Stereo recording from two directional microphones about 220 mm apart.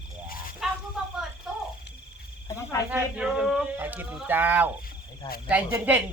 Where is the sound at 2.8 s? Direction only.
5° right (ahead or behind).